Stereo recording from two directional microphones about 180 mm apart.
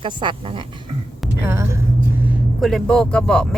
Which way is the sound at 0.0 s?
25° right (ahead or behind).